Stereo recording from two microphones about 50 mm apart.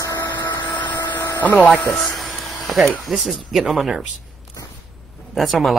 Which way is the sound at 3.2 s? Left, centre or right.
Centre.